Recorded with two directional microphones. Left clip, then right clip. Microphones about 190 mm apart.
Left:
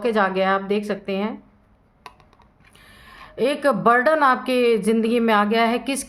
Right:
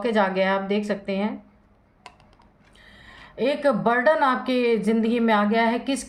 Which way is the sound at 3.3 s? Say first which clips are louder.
Left 2 dB; 30° left (ahead or behind).